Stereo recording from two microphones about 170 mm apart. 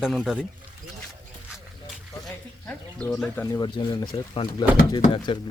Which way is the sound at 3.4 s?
25° left (ahead or behind).